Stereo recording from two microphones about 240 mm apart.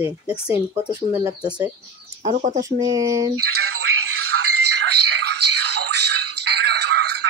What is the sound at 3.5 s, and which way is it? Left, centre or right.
Music, right.